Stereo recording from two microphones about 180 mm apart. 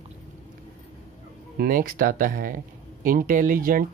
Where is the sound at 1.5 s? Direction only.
55° right (ahead or behind).